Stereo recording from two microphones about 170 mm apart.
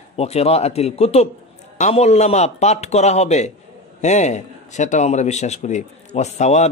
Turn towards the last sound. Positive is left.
turn(degrees=40)  # may be behind; listen again after turning